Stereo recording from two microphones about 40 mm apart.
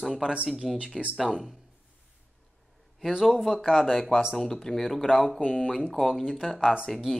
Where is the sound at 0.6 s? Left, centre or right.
Centre.